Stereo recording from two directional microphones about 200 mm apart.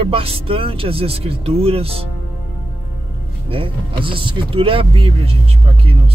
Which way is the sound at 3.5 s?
25° right (ahead or behind).